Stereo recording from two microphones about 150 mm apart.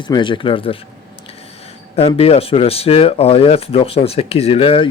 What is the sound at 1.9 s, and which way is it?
A man's voice, 40° left (ahead or behind).